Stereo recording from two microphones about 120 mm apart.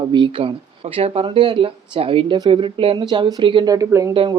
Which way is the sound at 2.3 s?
40° right (ahead or behind).